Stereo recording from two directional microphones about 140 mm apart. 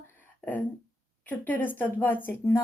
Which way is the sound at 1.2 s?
10° left (ahead or behind).